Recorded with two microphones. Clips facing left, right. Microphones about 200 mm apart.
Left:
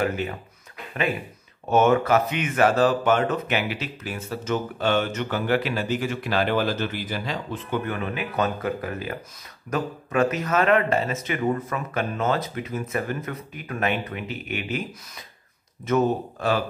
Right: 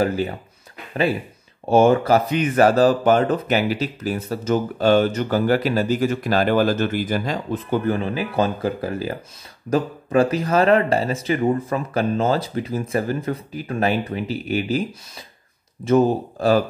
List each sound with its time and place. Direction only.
0.0 s speech: 35° right (ahead or behind)
1.7 s speech: 30° right (ahead or behind)